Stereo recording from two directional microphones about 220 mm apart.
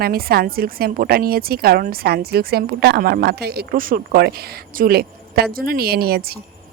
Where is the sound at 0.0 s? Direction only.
45° right (ahead or behind).